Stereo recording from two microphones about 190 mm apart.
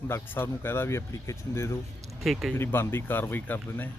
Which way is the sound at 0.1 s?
10° left (ahead or behind).